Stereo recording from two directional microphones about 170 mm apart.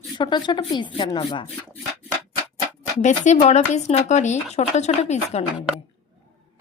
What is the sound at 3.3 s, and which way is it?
Speech, 40° left (ahead or behind).